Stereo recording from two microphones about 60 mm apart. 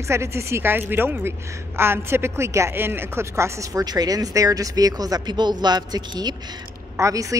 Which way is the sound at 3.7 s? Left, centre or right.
Right.